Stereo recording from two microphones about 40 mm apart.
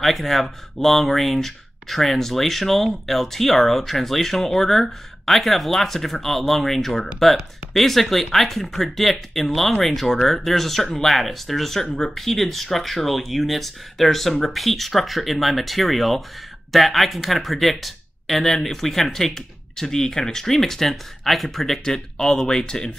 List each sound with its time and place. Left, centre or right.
0.0 s speech: centre